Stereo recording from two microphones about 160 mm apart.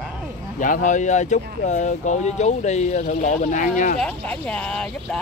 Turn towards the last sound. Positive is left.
turn(degrees=5)  # may be behind; listen again after turning